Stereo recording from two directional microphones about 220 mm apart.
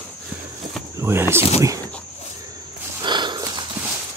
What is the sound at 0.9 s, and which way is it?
Speech, 10° right (ahead or behind).